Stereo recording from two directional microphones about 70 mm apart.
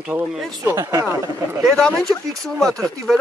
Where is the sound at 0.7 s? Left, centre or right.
Right.